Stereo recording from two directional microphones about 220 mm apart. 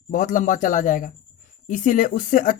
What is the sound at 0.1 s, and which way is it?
Speech, 35° left (ahead or behind).